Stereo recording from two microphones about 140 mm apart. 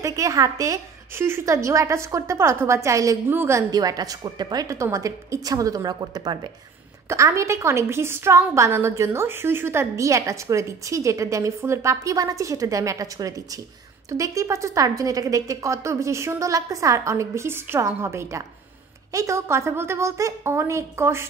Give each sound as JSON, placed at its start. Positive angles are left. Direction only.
{"t": 0.0, "sound": "a woman's voice", "side_deg": -25}